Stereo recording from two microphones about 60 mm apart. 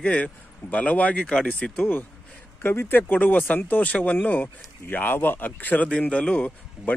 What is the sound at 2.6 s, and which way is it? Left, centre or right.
Speech, left.